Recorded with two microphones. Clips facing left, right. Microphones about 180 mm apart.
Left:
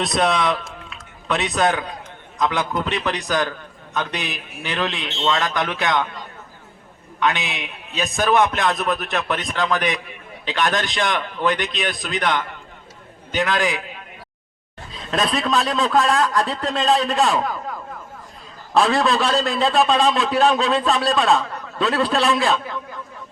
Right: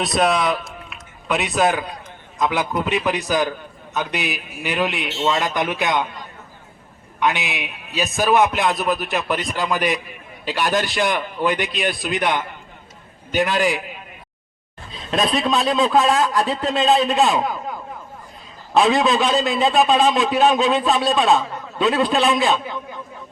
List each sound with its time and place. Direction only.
0.0 s a man's voice: 5° right (ahead or behind)
7.2 s a man's voice: 10° right (ahead or behind)
14.9 s a man's voice: 30° right (ahead or behind)
15.7 s a man's voice: 5° right (ahead or behind)